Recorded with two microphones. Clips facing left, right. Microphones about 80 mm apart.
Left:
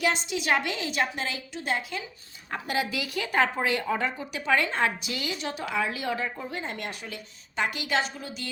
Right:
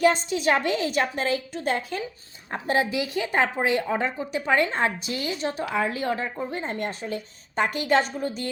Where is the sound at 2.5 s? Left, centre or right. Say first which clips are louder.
Right 5 dB; right.